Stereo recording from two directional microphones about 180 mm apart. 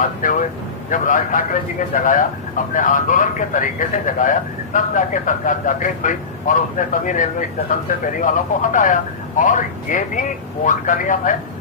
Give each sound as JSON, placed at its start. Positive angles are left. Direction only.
{"t": 0.2, "sound": "a man's voice", "side_deg": 45}